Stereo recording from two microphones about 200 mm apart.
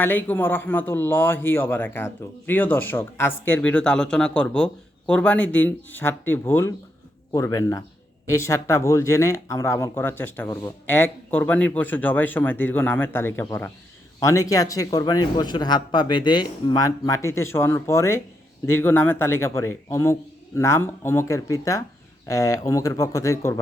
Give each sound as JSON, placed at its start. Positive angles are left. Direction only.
{"t": 0.0, "sound": "speech", "side_deg": 10}